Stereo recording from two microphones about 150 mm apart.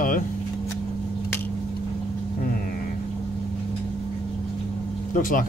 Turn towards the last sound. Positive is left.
turn(degrees=65)  # may be behind; listen again after turning